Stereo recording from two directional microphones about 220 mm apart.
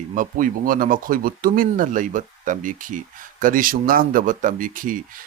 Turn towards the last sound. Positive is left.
turn(degrees=-40)  # may be behind; listen again after turning